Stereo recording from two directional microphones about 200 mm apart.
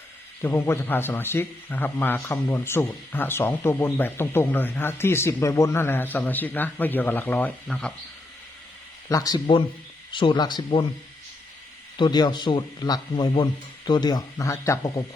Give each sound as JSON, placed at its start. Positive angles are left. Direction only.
{"t": 0.4, "sound": "speech", "side_deg": 10}
{"t": 9.0, "sound": "speech", "side_deg": 20}
{"t": 11.9, "sound": "speech", "side_deg": 20}